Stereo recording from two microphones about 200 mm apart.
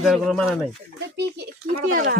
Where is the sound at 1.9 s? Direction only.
40° right (ahead or behind).